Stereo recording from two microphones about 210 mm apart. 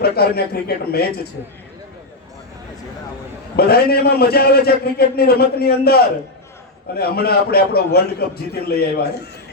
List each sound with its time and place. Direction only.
0.0 s a man's voice: 50° left (ahead or behind)
3.5 s a man's voice: 50° left (ahead or behind)